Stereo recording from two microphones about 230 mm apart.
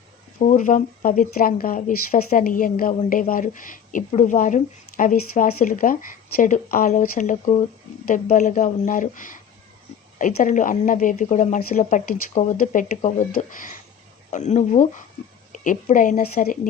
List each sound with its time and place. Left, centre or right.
0.3 s speech: left